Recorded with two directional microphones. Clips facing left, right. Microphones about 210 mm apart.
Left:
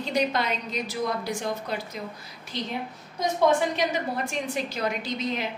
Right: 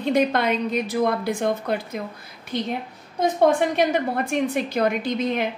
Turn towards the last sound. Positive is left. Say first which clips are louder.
# right 6 dB
turn(degrees=-55)  # may be behind; listen again after turning